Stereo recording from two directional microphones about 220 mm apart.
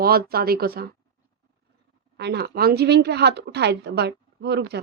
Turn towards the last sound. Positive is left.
turn(degrees=-50)  # may be behind; listen again after turning